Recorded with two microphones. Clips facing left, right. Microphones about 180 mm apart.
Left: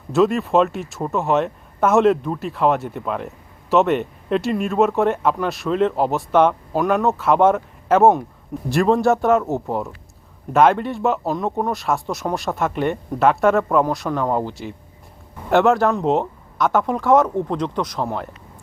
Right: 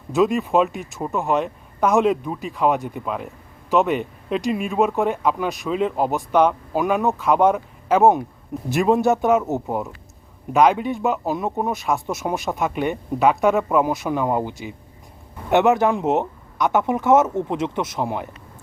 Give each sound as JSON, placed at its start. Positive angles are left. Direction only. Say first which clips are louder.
{"t": 0.1, "sound": "speech", "louder": "left 2 dB", "side_deg": 0}
{"t": 15.5, "sound": "speech", "louder": "left 1 dB", "side_deg": -20}
{"t": 17.9, "sound": "speech", "louder": "even", "side_deg": -15}